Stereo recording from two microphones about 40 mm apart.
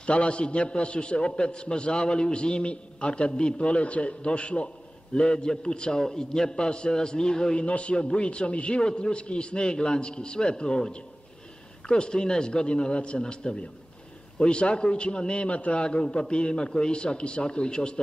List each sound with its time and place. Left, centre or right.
0.0 s a man's voice: left
7.6 s a man's voice: left